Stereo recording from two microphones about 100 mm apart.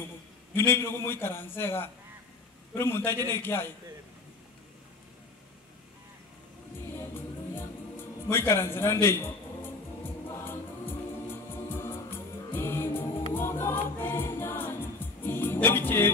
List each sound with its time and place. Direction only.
0.6 s a man's voice: 25° left (ahead or behind)
7.0 s music: 20° left (ahead or behind)
8.3 s a man's voice: 25° left (ahead or behind)
10.4 s music: 25° left (ahead or behind)